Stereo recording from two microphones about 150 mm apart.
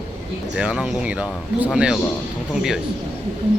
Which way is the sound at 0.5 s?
5° right (ahead or behind).